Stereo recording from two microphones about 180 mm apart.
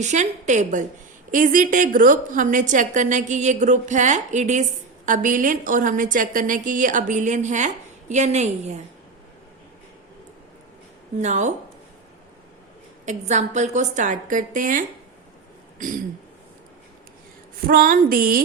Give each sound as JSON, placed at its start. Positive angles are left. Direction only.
{"t": 0.0, "sound": "a woman's voice", "side_deg": -40}
{"t": 11.2, "sound": "a woman's voice", "side_deg": -40}
{"t": 13.1, "sound": "a woman's voice", "side_deg": -40}
{"t": 17.7, "sound": "a woman's voice", "side_deg": -50}